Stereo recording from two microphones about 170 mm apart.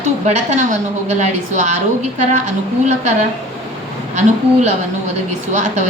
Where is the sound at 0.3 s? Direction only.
45° right (ahead or behind).